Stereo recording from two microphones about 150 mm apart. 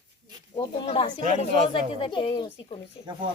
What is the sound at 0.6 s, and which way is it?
A woman's voice, 35° left (ahead or behind).